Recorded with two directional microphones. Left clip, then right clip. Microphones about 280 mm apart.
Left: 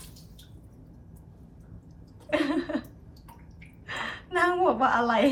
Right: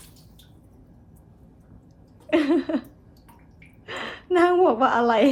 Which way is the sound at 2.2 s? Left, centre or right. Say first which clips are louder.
Right 6 dB; right.